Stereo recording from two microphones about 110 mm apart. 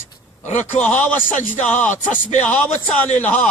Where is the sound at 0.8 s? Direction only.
15° left (ahead or behind).